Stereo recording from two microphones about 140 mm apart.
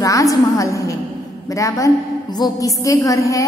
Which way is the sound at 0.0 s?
25° left (ahead or behind).